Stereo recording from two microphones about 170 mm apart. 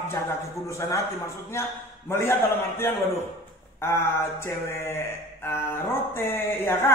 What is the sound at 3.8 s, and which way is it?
A man's voice, 15° left (ahead or behind).